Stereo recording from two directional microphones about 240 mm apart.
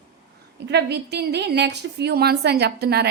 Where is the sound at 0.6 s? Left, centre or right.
Right.